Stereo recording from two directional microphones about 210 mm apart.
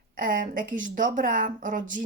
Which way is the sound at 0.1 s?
40° right (ahead or behind).